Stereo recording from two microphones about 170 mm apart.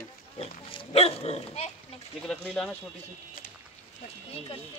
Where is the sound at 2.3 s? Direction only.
5° left (ahead or behind).